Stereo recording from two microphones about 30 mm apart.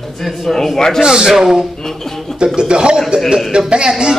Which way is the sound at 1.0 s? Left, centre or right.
Right.